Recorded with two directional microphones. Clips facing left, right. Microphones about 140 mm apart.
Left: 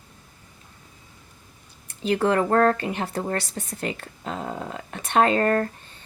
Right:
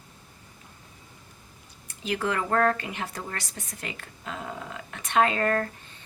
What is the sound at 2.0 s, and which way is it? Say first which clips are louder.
A woman's voice: left 7 dB; 35° left (ahead or behind).